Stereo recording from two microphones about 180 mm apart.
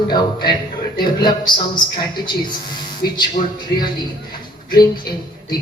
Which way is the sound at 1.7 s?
25° left (ahead or behind).